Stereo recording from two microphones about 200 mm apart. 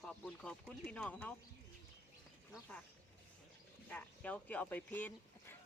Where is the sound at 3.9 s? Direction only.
5° left (ahead or behind).